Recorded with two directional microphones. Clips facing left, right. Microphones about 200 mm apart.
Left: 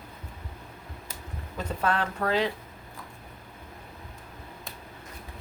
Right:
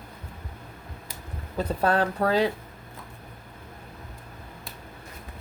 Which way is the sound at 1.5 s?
35° right (ahead or behind).